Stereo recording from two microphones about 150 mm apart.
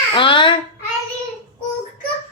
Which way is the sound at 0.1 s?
35° left (ahead or behind).